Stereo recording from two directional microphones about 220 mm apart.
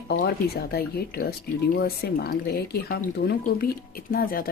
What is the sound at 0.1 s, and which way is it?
Speech, 45° left (ahead or behind).